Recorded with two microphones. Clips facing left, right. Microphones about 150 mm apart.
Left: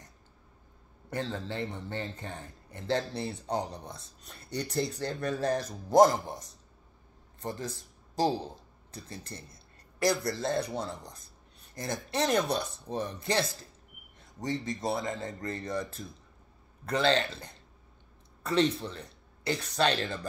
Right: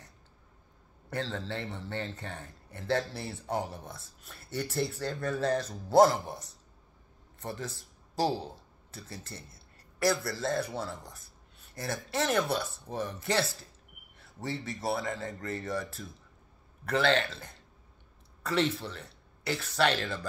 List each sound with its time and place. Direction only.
1.1 s speech: 15° left (ahead or behind)
9.3 s speech: 5° right (ahead or behind)
10.0 s speech: 20° left (ahead or behind)
18.5 s speech: 20° left (ahead or behind)